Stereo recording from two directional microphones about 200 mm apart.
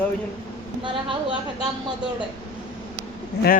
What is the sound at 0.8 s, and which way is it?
Speech, 25° right (ahead or behind).